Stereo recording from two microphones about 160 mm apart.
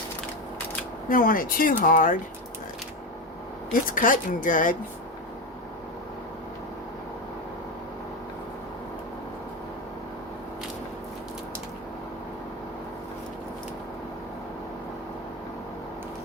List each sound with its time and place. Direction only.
1.1 s a woman's voice: 60° left (ahead or behind)
3.7 s a woman's voice: 55° left (ahead or behind)